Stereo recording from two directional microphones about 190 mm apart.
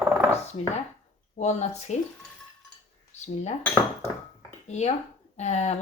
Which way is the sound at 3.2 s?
35° left (ahead or behind).